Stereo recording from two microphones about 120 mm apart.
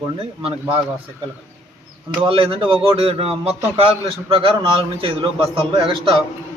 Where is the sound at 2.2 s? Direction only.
50° right (ahead or behind).